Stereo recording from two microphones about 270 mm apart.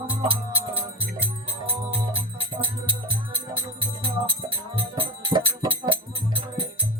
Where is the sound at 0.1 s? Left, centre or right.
Centre.